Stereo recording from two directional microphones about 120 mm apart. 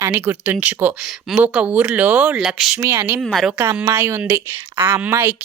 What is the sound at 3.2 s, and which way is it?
Speech, centre (ahead or behind).